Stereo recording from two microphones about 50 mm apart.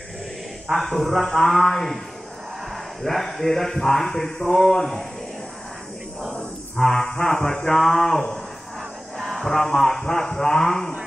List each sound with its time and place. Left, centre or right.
0.7 s mantra: centre
3.0 s speech: centre
6.3 s mantra: centre
9.2 s speech: centre